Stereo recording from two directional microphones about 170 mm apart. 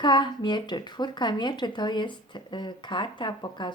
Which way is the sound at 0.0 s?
25° left (ahead or behind).